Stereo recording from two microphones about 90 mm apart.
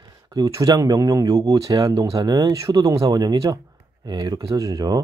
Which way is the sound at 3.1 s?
50° right (ahead or behind).